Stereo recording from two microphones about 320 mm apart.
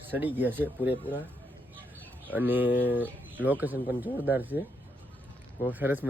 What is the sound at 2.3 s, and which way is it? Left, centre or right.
Speech, centre.